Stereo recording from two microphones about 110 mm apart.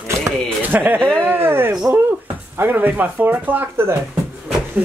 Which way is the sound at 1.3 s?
20° right (ahead or behind).